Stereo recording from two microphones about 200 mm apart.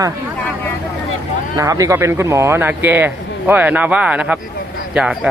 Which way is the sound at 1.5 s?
15° right (ahead or behind).